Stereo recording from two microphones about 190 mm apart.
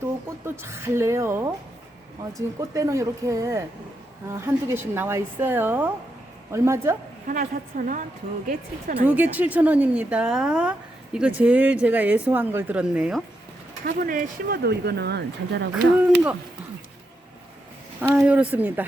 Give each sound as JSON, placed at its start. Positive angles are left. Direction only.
{"t": 0.4, "sound": "speech", "side_deg": -10}
{"t": 2.6, "sound": "speech", "side_deg": -15}
{"t": 7.3, "sound": "a woman's voice", "side_deg": -45}
{"t": 9.0, "sound": "speech", "side_deg": -10}
{"t": 13.8, "sound": "speech", "side_deg": -45}
{"t": 15.7, "sound": "speech", "side_deg": -10}
{"t": 18.1, "sound": "speech", "side_deg": -5}